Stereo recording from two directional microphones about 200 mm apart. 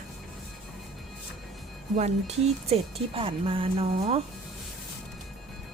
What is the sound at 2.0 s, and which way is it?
Speech, 35° right (ahead or behind).